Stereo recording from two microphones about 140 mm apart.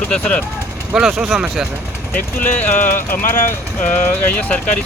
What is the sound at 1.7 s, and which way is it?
Vehicle, 15° right (ahead or behind).